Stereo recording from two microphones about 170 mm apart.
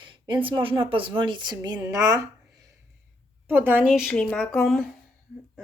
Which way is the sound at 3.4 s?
10° right (ahead or behind).